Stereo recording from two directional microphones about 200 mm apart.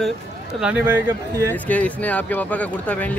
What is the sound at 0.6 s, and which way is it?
Speech, 5° right (ahead or behind).